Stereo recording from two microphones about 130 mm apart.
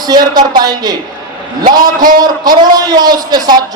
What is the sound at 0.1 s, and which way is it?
Speech, 30° right (ahead or behind).